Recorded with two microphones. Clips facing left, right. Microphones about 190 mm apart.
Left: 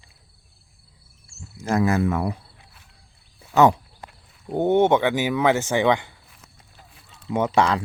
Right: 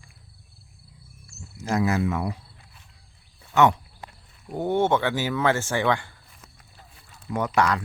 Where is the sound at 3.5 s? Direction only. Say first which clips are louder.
Left 3 dB; 35° left (ahead or behind).